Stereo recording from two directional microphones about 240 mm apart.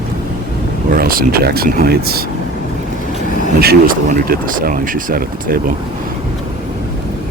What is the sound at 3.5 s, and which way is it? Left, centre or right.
Speech, right.